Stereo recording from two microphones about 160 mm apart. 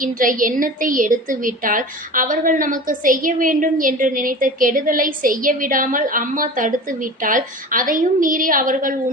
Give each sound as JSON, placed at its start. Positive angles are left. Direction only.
{"t": 0.0, "sound": "a woman's voice", "side_deg": -60}